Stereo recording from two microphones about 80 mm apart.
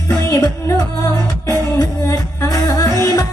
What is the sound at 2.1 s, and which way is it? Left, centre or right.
Music, left.